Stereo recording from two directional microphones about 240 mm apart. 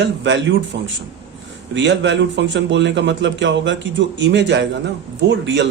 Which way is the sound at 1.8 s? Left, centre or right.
Right.